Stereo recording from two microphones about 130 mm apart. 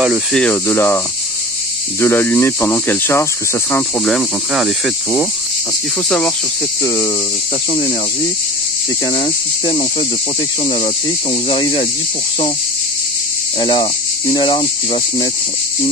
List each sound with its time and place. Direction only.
0.3 s speech: 5° left (ahead or behind)
0.7 s speech: 20° left (ahead or behind)
4.0 s speech: 5° left (ahead or behind)
6.0 s speech: 10° left (ahead or behind)
9.1 s speech: 50° left (ahead or behind)
13.6 s cricket: 40° left (ahead or behind)